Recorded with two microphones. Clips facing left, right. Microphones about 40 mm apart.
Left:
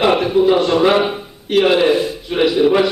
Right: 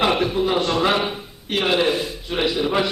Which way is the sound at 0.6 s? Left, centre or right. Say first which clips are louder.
Left 6 dB; centre.